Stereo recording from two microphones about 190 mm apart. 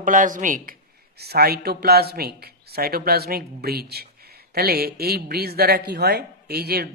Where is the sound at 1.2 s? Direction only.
55° right (ahead or behind).